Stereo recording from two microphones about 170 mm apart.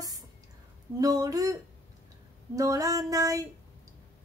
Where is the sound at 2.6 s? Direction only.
20° right (ahead or behind).